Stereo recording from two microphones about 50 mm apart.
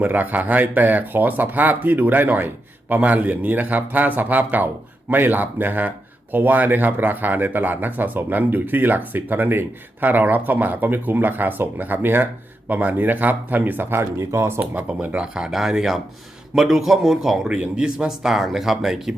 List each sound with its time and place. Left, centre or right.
0.0 s speech: right
14.0 s speech: right
15.2 s speech: centre
17.5 s speech: centre